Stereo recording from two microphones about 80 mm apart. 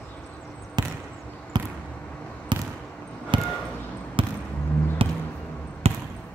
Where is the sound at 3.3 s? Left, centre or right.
Right.